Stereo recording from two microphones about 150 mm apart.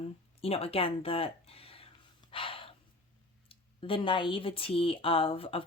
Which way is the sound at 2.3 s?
35° left (ahead or behind).